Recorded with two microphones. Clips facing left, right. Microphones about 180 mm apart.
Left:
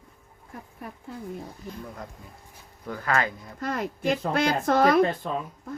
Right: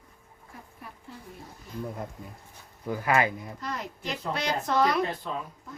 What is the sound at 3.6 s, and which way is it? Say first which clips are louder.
Speech: left 10 dB; 50° left (ahead or behind).